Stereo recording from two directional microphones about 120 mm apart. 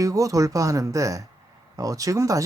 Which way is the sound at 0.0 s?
30° right (ahead or behind).